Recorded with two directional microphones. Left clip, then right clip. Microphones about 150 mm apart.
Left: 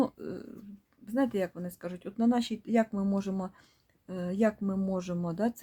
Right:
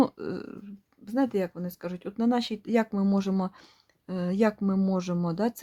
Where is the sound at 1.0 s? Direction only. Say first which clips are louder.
Right 3 dB; 25° right (ahead or behind).